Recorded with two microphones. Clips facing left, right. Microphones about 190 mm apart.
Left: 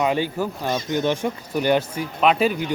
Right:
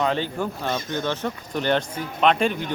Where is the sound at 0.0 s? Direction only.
10° left (ahead or behind).